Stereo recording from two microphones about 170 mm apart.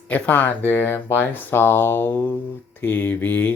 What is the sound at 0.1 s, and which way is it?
Speech, 10° left (ahead or behind).